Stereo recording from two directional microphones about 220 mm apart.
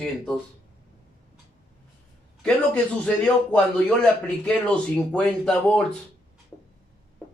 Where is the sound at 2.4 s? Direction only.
5° left (ahead or behind).